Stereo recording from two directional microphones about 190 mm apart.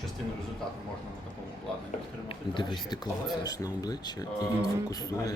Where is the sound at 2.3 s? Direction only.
25° left (ahead or behind).